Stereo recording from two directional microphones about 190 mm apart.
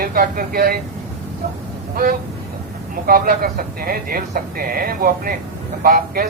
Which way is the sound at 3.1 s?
50° right (ahead or behind).